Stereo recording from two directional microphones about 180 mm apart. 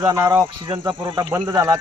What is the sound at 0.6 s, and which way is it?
Speech, 25° right (ahead or behind).